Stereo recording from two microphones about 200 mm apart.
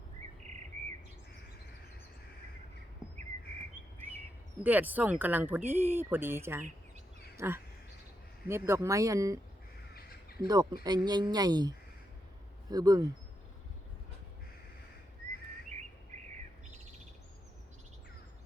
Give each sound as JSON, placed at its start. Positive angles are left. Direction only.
{"t": 4.6, "sound": "speech", "side_deg": -10}
{"t": 9.9, "sound": "crow", "side_deg": 50}
{"t": 10.4, "sound": "speech", "side_deg": -20}
{"t": 12.7, "sound": "speech", "side_deg": -20}